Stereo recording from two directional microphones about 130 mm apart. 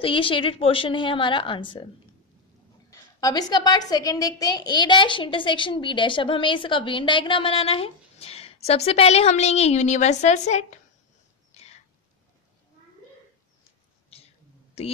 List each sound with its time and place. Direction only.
0.0 s a woman's voice: 45° left (ahead or behind)
2.9 s a woman's voice: 25° left (ahead or behind); by 10.8 s 65° left (ahead or behind)
11.6 s whispering: 55° left (ahead or behind)
14.1 s a sound: 50° left (ahead or behind)
14.8 s a woman's voice: 55° left (ahead or behind)